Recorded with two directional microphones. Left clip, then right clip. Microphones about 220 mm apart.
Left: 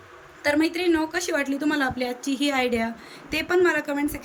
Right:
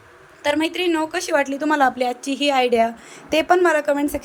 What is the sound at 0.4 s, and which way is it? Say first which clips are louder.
A woman's voice: right 2 dB; 10° right (ahead or behind).